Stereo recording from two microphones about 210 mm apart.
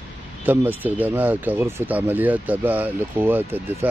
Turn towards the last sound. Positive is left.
turn(degrees=-10)  # may be behind; listen again after turning